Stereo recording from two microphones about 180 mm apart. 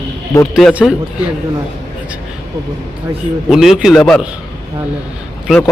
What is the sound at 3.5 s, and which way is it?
Speech, centre (ahead or behind).